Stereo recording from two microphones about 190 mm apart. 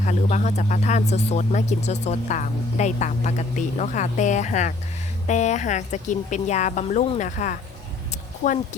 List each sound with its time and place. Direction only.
0.0 s speech: 40° left (ahead or behind)